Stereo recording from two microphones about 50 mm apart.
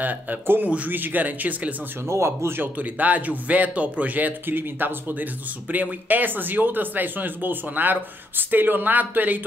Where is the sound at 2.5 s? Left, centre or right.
Right.